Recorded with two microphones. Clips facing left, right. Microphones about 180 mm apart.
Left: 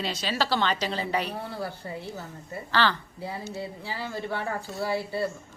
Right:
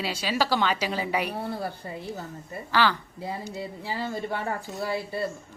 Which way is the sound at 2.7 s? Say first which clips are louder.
Right 1 dB; 10° right (ahead or behind).